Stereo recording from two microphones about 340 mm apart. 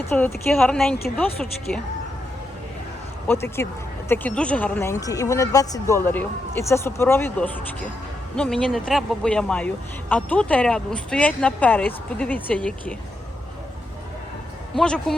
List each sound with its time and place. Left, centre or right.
0.1 s speech: centre
3.2 s speech: centre
14.8 s speech: centre